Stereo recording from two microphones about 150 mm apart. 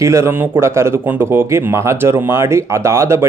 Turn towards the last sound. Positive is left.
turn(degrees=-15)  # may be behind; listen again after turning